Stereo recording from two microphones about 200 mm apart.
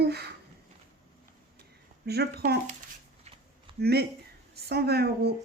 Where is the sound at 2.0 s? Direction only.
55° right (ahead or behind).